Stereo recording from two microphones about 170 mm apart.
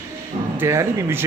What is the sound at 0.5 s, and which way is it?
Speech, 15° right (ahead or behind).